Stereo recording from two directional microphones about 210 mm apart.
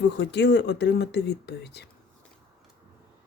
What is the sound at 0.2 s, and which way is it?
Speech, 55° left (ahead or behind).